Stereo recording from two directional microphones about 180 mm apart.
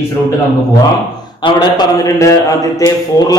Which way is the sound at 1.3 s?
25° left (ahead or behind).